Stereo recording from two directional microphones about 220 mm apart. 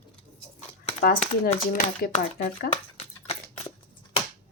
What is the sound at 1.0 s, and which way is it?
Speech, 40° left (ahead or behind).